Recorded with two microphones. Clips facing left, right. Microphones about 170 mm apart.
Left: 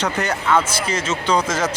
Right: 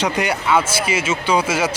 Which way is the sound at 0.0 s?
10° right (ahead or behind).